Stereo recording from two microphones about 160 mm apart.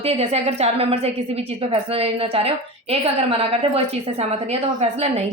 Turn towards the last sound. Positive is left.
turn(degrees=-40)  # may be behind; listen again after turning